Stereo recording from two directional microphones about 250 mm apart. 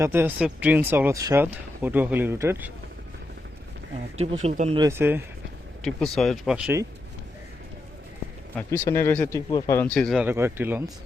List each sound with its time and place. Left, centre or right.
0.0 s speech: centre
4.2 s speech: right
4.9 s speech: centre
5.8 s speech: centre
8.5 s speech: centre